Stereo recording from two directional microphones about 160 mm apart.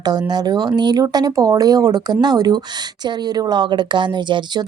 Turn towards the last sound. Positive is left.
turn(degrees=-25)  # may be behind; listen again after turning